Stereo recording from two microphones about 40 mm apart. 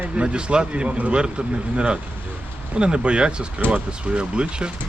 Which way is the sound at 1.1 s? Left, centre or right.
Right.